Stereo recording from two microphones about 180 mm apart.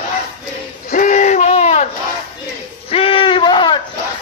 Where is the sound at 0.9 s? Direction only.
45° left (ahead or behind).